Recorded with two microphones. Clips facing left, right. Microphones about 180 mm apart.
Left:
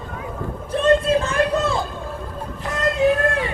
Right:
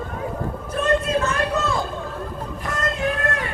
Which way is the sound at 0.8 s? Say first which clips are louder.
Left 4 dB; 30° left (ahead or behind).